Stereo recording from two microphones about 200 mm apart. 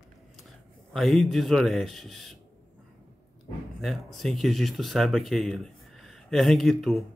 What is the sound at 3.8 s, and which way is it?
Speech, centre (ahead or behind).